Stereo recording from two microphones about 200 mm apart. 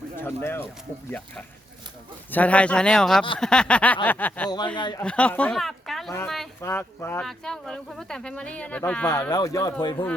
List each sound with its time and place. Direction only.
0.2 s speech: 10° left (ahead or behind)
2.3 s speech: 5° left (ahead or behind)
4.4 s speech: 20° left (ahead or behind)
5.0 s speech: 5° left (ahead or behind)
6.6 s speech: 15° left (ahead or behind)